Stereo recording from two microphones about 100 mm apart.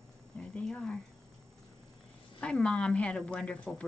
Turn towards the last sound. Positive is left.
turn(degrees=10)  # may be behind; listen again after turning